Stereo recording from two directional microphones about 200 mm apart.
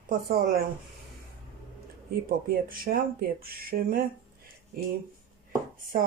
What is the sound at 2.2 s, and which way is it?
Speech, 45° right (ahead or behind).